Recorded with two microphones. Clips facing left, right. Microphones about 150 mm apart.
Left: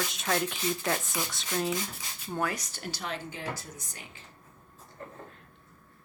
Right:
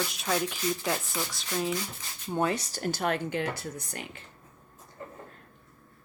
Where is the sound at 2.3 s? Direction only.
25° right (ahead or behind); by 4.2 s 65° right (ahead or behind).